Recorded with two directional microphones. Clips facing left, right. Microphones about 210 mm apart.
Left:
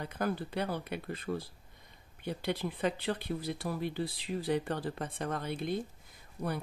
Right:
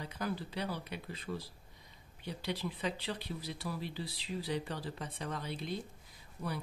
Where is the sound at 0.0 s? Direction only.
50° left (ahead or behind).